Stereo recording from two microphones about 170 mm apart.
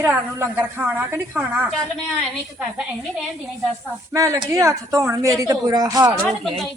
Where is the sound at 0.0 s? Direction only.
10° right (ahead or behind).